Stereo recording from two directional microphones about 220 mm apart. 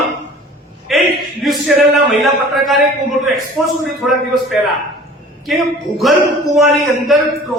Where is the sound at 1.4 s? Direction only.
Centre (ahead or behind).